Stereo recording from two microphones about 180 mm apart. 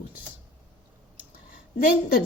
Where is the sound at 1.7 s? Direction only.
50° left (ahead or behind).